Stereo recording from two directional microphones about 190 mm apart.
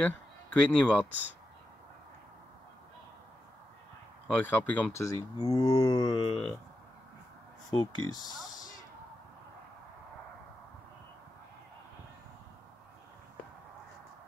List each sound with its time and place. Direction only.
0.0 s a man's voice: 5° left (ahead or behind)
4.4 s speech: 10° left (ahead or behind)
7.7 s speech: 20° left (ahead or behind)
8.2 s speech: centre (ahead or behind)